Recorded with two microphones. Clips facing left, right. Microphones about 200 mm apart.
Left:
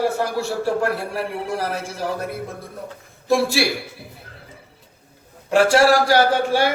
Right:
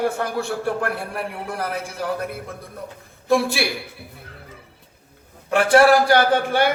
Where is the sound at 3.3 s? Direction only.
55° right (ahead or behind).